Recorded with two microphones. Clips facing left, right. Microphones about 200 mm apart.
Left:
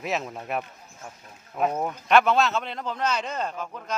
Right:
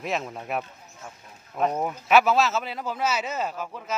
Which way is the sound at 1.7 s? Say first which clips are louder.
Even; 5° right (ahead or behind).